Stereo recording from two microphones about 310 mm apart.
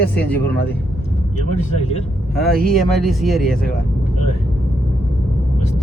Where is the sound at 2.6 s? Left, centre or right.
Centre.